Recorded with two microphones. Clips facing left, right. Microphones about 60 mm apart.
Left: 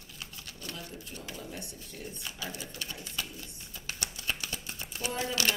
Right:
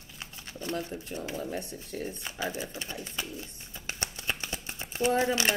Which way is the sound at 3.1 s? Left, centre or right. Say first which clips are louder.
Right 2 dB; right.